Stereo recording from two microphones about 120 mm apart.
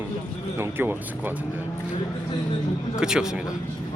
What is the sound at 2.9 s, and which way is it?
Speech, 5° right (ahead or behind).